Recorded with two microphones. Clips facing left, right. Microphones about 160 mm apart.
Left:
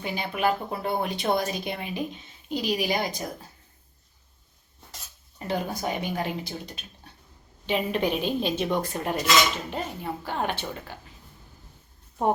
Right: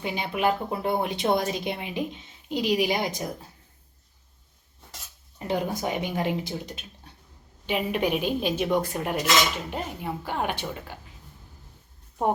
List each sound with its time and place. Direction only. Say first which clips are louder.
0.0 s speech: right 1 dB; 20° right (ahead or behind)
5.4 s speech: right 2 dB; 20° right (ahead or behind)
7.7 s a woman's voice: even; 10° right (ahead or behind)